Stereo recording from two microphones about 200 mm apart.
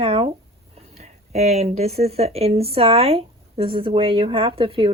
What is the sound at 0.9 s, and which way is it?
Speech, 30° right (ahead or behind).